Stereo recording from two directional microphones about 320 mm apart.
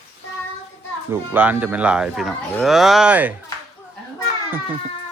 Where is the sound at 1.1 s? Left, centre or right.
Centre.